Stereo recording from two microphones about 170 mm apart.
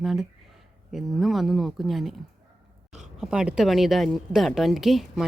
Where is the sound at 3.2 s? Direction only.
5° right (ahead or behind).